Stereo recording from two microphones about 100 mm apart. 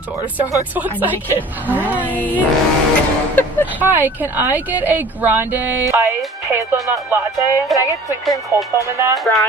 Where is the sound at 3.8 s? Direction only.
20° right (ahead or behind).